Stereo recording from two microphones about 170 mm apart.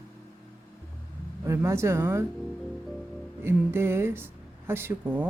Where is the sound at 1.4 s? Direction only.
15° right (ahead or behind).